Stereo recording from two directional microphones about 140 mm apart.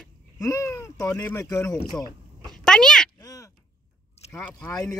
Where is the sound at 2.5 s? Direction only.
5° left (ahead or behind).